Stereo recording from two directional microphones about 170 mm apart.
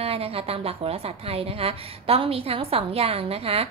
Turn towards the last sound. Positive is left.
turn(degrees=-35)  # may be behind; listen again after turning